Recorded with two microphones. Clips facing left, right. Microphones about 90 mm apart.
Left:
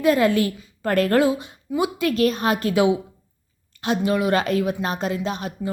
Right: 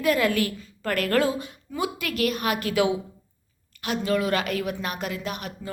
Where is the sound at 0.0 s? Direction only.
25° left (ahead or behind).